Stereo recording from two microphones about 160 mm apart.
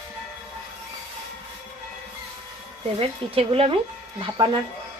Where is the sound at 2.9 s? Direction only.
35° right (ahead or behind).